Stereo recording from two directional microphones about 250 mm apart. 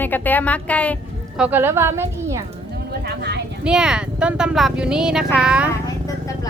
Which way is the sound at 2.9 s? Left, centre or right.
Right.